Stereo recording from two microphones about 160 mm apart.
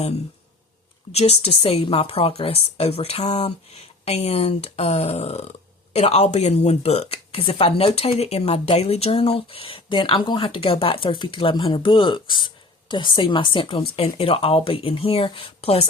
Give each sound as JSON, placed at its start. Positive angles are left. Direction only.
{"t": 1.1, "sound": "a woman's voice", "side_deg": 40}